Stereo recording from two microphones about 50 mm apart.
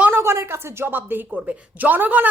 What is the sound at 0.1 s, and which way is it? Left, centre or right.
Speech, right.